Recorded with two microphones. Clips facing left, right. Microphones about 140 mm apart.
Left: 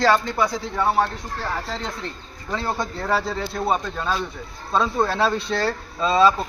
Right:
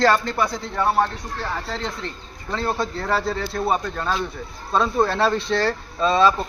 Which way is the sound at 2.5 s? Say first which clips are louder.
Right 2 dB; 15° left (ahead or behind).